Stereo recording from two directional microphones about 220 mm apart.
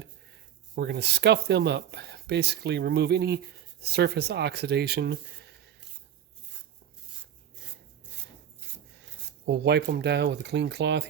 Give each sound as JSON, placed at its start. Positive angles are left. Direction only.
{"t": 0.8, "sound": "speech", "side_deg": -50}
{"t": 9.5, "sound": "speech", "side_deg": -50}